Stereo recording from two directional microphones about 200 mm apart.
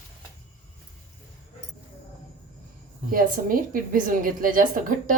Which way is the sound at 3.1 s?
45° right (ahead or behind).